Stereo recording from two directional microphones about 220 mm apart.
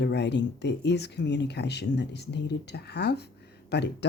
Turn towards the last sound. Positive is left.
turn(degrees=50)  # may be behind; listen again after turning